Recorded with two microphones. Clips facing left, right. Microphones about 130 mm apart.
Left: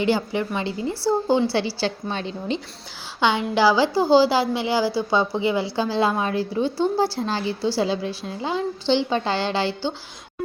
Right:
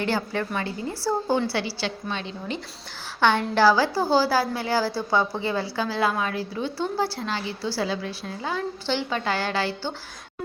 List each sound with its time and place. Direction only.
0.0 s a woman's voice: 15° left (ahead or behind)
1.8 s a woman's voice: 35° left (ahead or behind)
3.2 s a woman's voice: 15° left (ahead or behind)
5.7 s a woman's voice: 25° left (ahead or behind)